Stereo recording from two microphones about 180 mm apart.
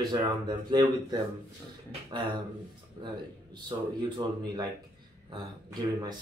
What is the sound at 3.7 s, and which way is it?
Speech, 25° right (ahead or behind).